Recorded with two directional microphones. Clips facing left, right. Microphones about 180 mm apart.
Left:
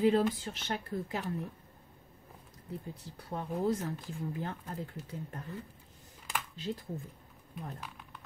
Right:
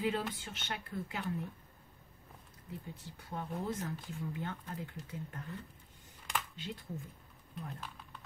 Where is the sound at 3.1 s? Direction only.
35° left (ahead or behind).